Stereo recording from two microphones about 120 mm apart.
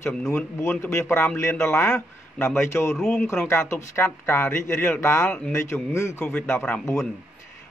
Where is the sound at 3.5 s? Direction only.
25° left (ahead or behind).